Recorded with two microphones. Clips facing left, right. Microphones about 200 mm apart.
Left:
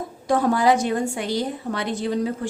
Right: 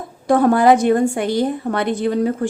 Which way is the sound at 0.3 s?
55° right (ahead or behind).